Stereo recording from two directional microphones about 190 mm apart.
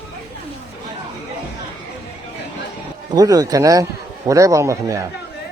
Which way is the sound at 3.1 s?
20° right (ahead or behind).